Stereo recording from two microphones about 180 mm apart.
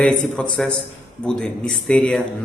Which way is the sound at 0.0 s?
5° left (ahead or behind).